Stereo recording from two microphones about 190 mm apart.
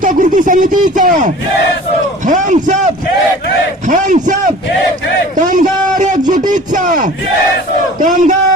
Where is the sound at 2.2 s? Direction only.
40° right (ahead or behind).